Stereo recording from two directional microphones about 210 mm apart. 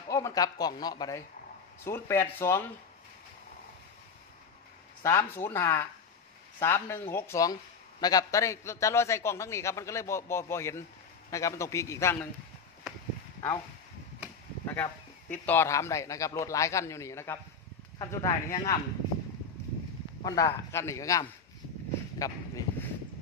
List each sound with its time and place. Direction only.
0.1 s a man's voice: 15° left (ahead or behind)
5.0 s a man's voice: 10° left (ahead or behind)
14.7 s a man's voice: 10° left (ahead or behind)
20.2 s a man's voice: 15° left (ahead or behind)
22.2 s a sound: 15° left (ahead or behind)